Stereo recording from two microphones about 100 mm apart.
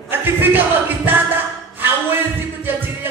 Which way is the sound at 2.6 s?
20° right (ahead or behind).